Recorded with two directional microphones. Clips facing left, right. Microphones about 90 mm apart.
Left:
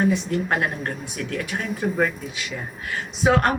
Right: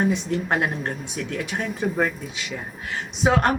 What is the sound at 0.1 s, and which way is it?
Speech, 20° right (ahead or behind).